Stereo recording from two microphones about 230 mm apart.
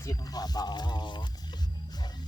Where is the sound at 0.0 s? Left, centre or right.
Centre.